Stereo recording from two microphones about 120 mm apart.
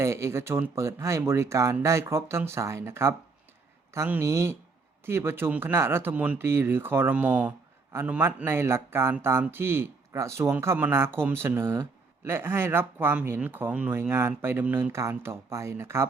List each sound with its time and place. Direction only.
0.0 s speech: 25° right (ahead or behind)